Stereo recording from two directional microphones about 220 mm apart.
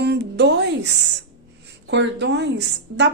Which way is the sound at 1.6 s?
50° right (ahead or behind).